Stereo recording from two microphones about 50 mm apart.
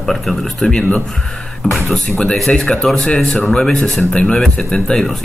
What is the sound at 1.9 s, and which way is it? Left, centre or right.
Speech, centre.